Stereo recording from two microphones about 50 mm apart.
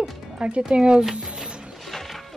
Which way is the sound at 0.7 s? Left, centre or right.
Centre.